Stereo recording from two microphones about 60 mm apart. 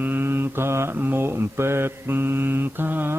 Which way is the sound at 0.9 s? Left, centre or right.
Right.